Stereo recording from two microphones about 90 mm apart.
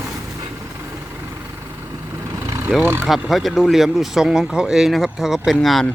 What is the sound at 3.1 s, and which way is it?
Speech, centre (ahead or behind).